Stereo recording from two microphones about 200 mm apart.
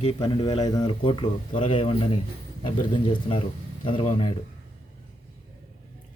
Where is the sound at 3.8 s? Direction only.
25° left (ahead or behind).